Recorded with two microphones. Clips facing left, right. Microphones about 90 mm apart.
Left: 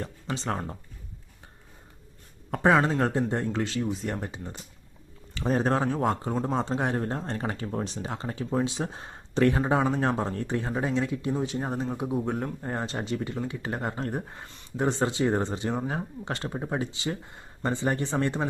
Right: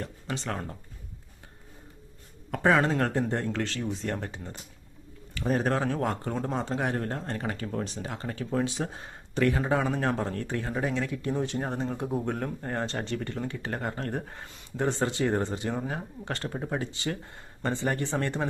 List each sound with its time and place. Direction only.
0.3 s speech: 25° left (ahead or behind)
2.6 s speech: 15° left (ahead or behind)
5.3 s speech: 25° left (ahead or behind)
11.4 s speech: 5° left (ahead or behind)